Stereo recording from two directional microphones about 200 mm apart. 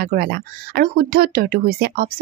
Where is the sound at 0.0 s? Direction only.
50° right (ahead or behind).